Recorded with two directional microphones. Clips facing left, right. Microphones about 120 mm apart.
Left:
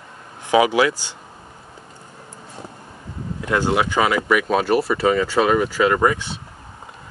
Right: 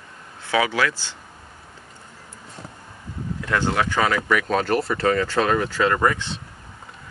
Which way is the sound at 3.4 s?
15° left (ahead or behind).